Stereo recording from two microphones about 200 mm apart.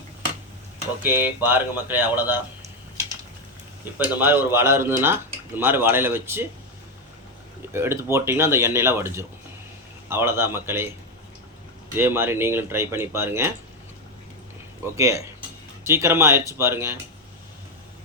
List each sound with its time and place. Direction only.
1.0 s speech: 10° right (ahead or behind)
3.9 s speech: 10° right (ahead or behind)
7.7 s speech: 10° right (ahead or behind)
11.9 s speech: 10° right (ahead or behind)
14.9 s speech: 15° right (ahead or behind)